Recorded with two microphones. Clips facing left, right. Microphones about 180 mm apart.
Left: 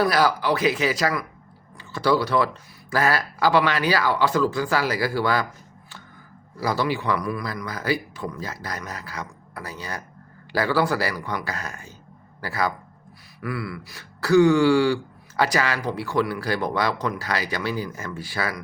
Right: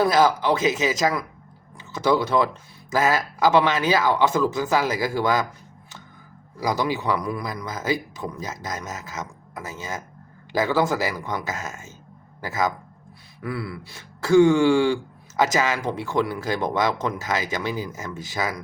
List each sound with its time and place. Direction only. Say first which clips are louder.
0.0 s speech: right 2 dB; 20° right (ahead or behind)
6.6 s speech: even; 15° right (ahead or behind)